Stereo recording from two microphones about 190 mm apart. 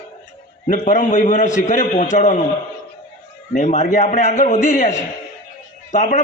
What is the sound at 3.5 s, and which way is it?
A man's voice, 40° left (ahead or behind).